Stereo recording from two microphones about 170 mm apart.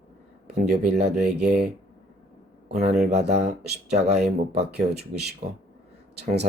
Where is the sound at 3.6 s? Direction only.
75° right (ahead or behind).